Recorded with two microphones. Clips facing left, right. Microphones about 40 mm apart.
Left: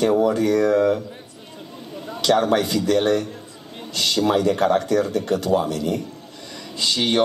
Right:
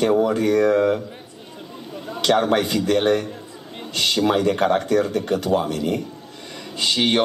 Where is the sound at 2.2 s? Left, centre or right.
Right.